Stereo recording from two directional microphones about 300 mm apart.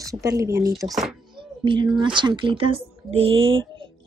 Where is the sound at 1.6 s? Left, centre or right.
Centre.